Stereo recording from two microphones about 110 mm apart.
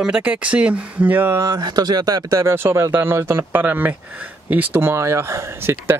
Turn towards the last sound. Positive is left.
turn(degrees=-20)  # may be behind; listen again after turning